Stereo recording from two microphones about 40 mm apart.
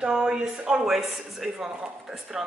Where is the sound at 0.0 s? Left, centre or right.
Right.